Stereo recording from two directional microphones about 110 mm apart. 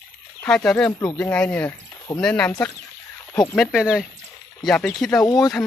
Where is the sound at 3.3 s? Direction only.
25° left (ahead or behind).